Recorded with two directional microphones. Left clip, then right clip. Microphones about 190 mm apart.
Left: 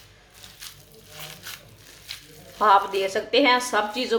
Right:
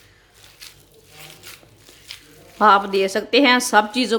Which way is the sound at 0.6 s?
Centre (ahead or behind).